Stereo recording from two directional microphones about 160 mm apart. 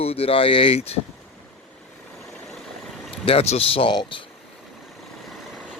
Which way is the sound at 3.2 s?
40° left (ahead or behind).